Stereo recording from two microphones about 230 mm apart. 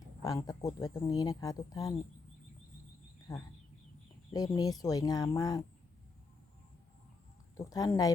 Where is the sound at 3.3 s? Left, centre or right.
Centre.